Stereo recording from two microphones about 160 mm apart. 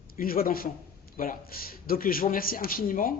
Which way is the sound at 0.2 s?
65° left (ahead or behind).